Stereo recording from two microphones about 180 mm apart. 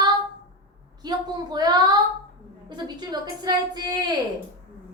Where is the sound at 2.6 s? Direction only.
25° right (ahead or behind).